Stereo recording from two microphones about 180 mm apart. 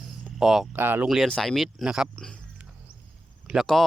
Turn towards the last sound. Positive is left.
turn(degrees=0)  # may be behind; listen again after turning